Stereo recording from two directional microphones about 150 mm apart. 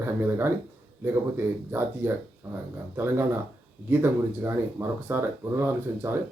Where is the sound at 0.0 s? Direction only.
15° right (ahead or behind).